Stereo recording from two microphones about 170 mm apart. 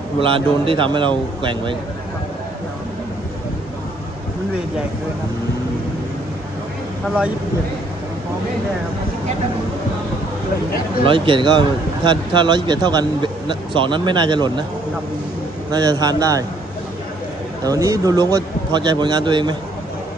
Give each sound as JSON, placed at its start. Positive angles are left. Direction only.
{"t": 0.2, "sound": "speech", "side_deg": -30}
{"t": 11.0, "sound": "speech", "side_deg": -30}
{"t": 15.7, "sound": "speech", "side_deg": -25}
{"t": 17.6, "sound": "speech", "side_deg": -20}